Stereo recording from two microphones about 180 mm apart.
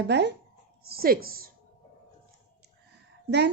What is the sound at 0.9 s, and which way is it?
Speech, 55° right (ahead or behind).